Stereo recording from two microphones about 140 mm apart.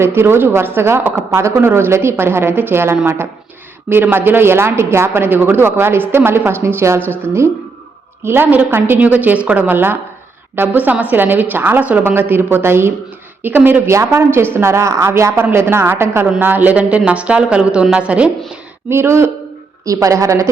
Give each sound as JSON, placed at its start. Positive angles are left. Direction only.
{"t": 0.0, "sound": "speech", "side_deg": -15}